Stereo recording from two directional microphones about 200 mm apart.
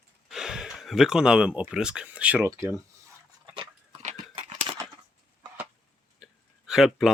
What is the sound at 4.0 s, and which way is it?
Chewing, 35° right (ahead or behind).